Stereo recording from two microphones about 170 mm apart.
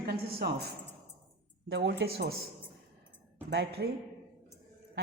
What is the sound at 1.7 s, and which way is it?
Speech, 85° right.